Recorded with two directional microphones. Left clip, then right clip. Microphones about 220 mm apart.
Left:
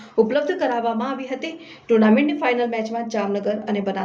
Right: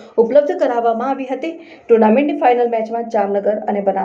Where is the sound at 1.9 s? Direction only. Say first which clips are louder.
Right 5 dB; 10° left (ahead or behind).